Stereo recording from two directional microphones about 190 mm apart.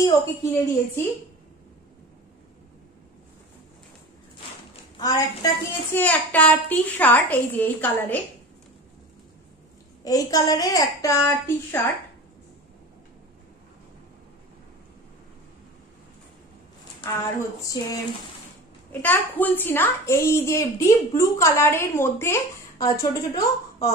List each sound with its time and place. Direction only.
0.0 s a child's voice: 10° left (ahead or behind)
4.9 s a child's voice: 20° left (ahead or behind)
10.0 s a woman's voice: 20° left (ahead or behind)
17.8 s a child's voice: 20° left (ahead or behind)